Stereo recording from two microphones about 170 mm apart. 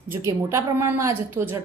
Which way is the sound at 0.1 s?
15° right (ahead or behind).